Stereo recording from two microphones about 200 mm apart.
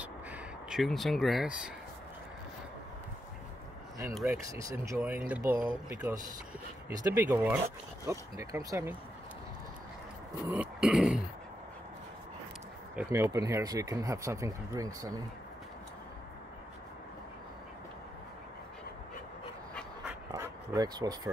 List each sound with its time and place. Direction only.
0.7 s speech: centre (ahead or behind)
4.3 s speech: 15° right (ahead or behind)
10.5 s throat clearing: 5° right (ahead or behind)
12.9 s speech: 15° right (ahead or behind)
20.2 s a sound: 15° right (ahead or behind)